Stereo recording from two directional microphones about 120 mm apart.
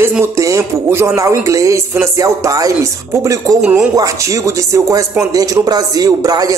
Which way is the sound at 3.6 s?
10° right (ahead or behind).